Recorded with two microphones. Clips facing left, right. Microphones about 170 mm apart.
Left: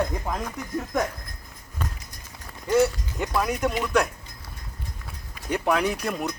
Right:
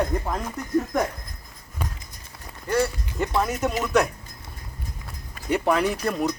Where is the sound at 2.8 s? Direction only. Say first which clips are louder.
Left 1 dB; centre (ahead or behind).